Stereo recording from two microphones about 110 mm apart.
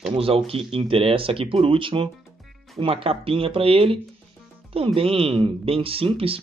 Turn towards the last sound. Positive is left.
turn(degrees=-60)  # may be behind; listen again after turning